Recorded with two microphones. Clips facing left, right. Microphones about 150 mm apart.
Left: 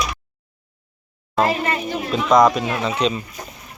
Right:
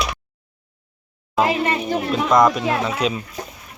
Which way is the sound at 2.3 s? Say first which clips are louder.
Left 2 dB; centre (ahead or behind).